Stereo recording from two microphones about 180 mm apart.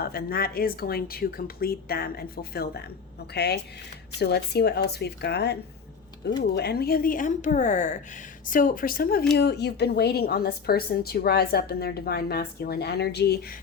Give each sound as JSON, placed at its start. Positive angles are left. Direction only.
{"t": 0.0, "sound": "a woman's voice", "side_deg": 60}
{"t": 9.4, "sound": "a woman's voice", "side_deg": 65}